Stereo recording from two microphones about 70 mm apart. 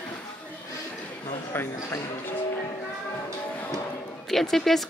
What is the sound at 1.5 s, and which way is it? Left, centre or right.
Speech, left.